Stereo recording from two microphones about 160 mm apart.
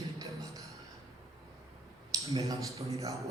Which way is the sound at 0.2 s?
20° right (ahead or behind).